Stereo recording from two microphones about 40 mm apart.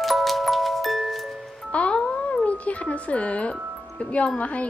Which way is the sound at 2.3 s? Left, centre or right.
Left.